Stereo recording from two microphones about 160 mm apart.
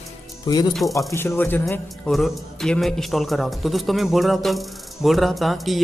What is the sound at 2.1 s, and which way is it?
A man's voice, centre (ahead or behind).